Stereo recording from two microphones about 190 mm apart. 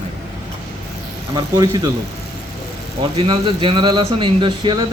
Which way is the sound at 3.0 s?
30° right (ahead or behind).